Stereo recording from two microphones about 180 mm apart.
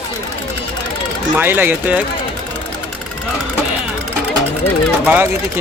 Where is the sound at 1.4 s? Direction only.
10° right (ahead or behind).